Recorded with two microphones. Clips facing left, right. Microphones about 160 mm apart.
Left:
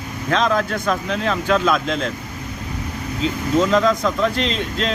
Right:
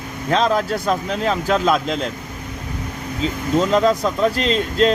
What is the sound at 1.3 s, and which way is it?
Speech, 35° right (ahead or behind).